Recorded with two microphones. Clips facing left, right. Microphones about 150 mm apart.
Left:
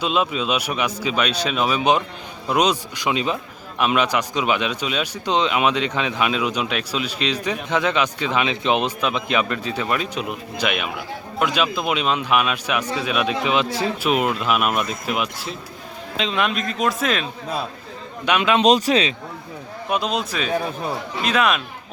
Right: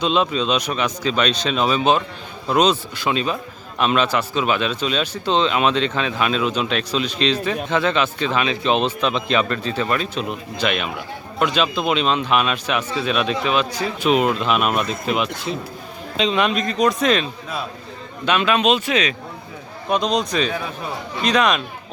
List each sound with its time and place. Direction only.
0.0 s a man's voice: 5° left (ahead or behind)
13.5 s speech: 25° left (ahead or behind)
14.0 s a man's voice: 5° left (ahead or behind)
18.3 s a man's voice: 15° left (ahead or behind)
18.6 s speech: 35° left (ahead or behind)
19.9 s a man's voice: 5° left (ahead or behind)